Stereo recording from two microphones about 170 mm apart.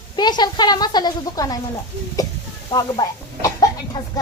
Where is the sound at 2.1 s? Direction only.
20° left (ahead or behind).